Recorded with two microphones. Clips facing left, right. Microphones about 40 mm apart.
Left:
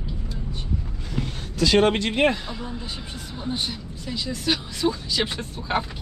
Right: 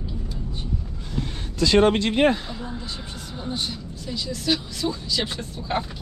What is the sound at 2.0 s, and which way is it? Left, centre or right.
Speech, left.